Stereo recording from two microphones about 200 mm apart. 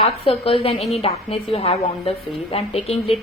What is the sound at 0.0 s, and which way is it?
A woman's voice, 30° left (ahead or behind).